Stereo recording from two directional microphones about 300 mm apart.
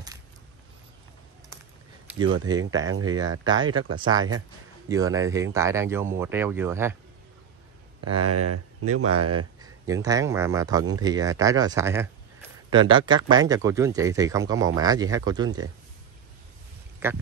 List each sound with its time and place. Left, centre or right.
2.0 s speech: centre
8.2 s speech: right
9.6 s speech: centre
17.0 s speech: centre